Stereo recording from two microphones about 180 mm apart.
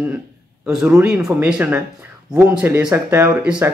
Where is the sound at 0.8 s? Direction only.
5° right (ahead or behind).